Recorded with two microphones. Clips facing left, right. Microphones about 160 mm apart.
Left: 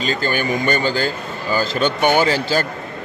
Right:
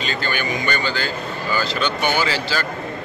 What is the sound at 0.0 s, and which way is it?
A man's voice, 40° left (ahead or behind).